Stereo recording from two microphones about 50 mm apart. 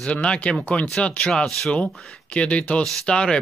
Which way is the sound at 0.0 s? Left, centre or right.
Centre.